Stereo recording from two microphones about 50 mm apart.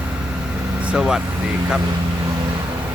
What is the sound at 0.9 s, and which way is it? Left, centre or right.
Speech, centre.